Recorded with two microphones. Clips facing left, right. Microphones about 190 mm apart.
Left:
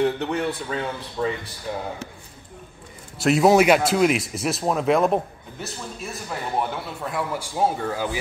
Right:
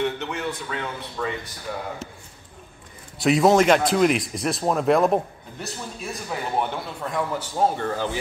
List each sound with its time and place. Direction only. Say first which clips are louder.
0.0 s a man's voice: left 4 dB; 35° left (ahead or behind)
3.2 s a man's voice: left 1 dB; centre (ahead or behind)